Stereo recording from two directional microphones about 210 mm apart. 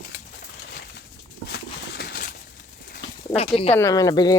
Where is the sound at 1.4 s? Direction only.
50° left (ahead or behind).